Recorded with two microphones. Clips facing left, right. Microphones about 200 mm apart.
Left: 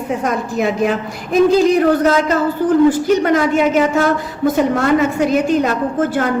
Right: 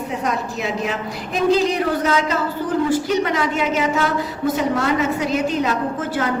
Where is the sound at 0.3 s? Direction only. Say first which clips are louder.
Left 6 dB; 50° left (ahead or behind).